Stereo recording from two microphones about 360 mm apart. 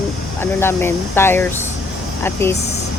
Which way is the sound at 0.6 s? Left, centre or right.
Centre.